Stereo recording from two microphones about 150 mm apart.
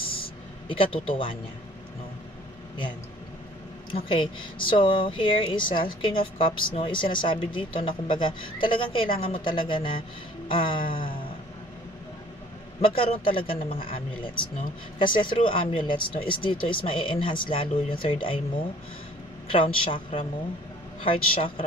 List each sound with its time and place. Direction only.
0.7 s speech: 35° left (ahead or behind)
4.1 s speech: 35° left (ahead or behind)
12.8 s speech: 35° left (ahead or behind)
19.4 s speech: 35° left (ahead or behind)